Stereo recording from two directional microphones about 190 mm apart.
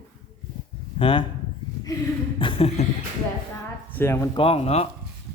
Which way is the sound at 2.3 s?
30° left (ahead or behind).